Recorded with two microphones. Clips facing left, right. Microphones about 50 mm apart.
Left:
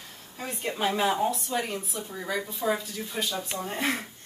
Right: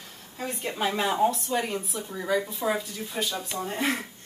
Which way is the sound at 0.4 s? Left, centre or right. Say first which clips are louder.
Right 1 dB; centre.